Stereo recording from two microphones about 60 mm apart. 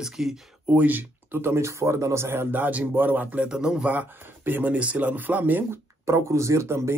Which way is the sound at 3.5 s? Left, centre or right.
Centre.